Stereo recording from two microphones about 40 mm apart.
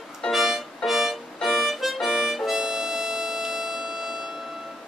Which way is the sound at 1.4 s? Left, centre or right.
Centre.